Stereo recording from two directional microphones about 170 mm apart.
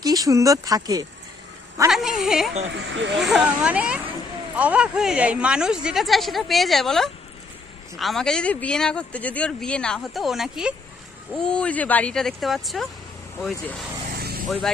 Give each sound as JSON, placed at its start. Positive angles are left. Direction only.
{"t": 0.0, "sound": "speech", "side_deg": -20}
{"t": 1.9, "sound": "a sound", "side_deg": 0}
{"t": 2.6, "sound": "speech", "side_deg": -90}
{"t": 3.2, "sound": "speech", "side_deg": 0}
{"t": 14.2, "sound": "vehicle", "side_deg": -65}